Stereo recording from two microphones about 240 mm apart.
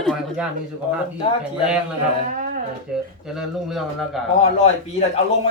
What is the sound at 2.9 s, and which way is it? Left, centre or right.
Speech, centre.